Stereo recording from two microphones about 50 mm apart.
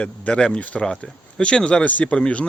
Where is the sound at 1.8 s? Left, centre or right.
Left.